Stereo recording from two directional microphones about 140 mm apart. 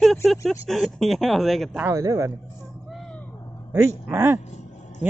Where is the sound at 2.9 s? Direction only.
Centre (ahead or behind).